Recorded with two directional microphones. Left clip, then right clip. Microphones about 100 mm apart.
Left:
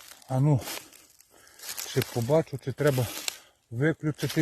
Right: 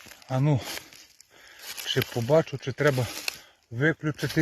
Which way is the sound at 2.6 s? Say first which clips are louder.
Right 2 dB; 15° left (ahead or behind).